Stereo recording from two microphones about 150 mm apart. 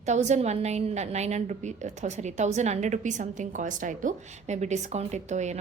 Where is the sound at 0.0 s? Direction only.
50° right (ahead or behind).